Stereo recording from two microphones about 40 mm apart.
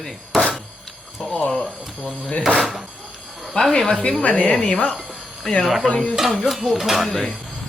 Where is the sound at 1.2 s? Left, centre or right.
Centre.